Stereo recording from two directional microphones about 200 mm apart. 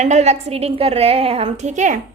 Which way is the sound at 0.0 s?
35° right (ahead or behind).